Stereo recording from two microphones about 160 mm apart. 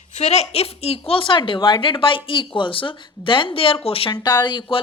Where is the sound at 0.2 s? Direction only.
40° left (ahead or behind).